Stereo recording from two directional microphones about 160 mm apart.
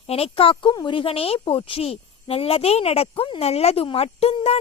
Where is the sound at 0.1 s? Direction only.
35° left (ahead or behind).